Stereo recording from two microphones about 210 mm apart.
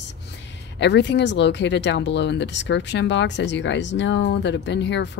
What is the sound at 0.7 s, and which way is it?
Speech, 55° left (ahead or behind).